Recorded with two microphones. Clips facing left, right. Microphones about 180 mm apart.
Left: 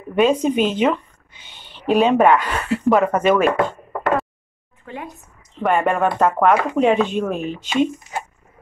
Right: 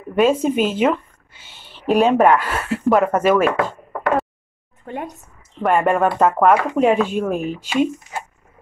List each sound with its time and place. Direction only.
0.2 s speech: 5° right (ahead or behind)
4.8 s speech: 50° right (ahead or behind)
5.6 s speech: 5° right (ahead or behind)